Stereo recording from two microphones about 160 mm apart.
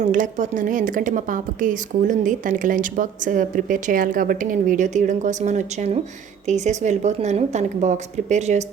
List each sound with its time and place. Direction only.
0.0 s a woman's voice: 55° right (ahead or behind)